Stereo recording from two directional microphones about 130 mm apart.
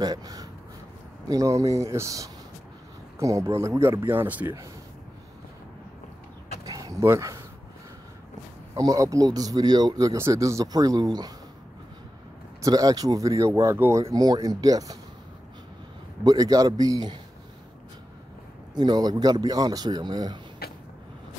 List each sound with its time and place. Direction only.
0.0 s speech: 30° right (ahead or behind)
4.1 s speech: 15° right (ahead or behind)
6.6 s a sound: 30° right (ahead or behind)
8.7 s speech: 25° right (ahead or behind)
12.6 s speech: 25° right (ahead or behind)
16.3 s speech: 30° right (ahead or behind)
18.8 s speech: 30° right (ahead or behind)